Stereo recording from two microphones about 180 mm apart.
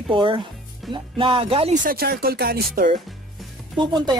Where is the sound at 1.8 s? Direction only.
55° right (ahead or behind).